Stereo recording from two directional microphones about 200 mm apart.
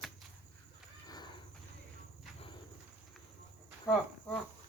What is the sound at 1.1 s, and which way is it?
Livestock, 20° left (ahead or behind).